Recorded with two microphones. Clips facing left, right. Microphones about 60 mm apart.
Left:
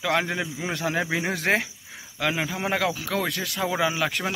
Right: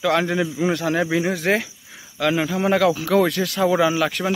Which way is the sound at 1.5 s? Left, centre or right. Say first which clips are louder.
Right 2 dB; left.